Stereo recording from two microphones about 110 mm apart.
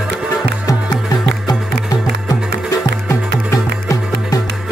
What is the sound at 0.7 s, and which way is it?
Music, 35° left (ahead or behind).